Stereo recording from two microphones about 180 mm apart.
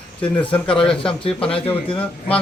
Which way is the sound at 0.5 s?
5° left (ahead or behind).